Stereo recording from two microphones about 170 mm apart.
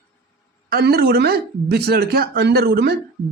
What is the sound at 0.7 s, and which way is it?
Speech, 65° right (ahead or behind).